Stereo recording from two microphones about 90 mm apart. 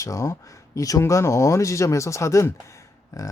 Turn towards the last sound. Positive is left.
turn(degrees=40)  # may be behind; listen again after turning